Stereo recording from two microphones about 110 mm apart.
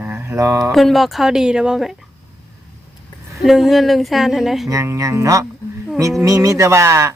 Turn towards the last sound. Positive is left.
turn(degrees=-25)  # may be behind; listen again after turning